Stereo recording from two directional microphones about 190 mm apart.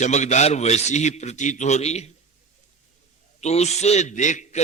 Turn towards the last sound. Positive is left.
turn(degrees=40)  # may be behind; listen again after turning